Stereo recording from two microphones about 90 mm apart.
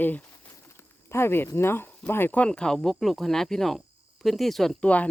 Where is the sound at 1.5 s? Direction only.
25° left (ahead or behind); by 4.7 s centre (ahead or behind).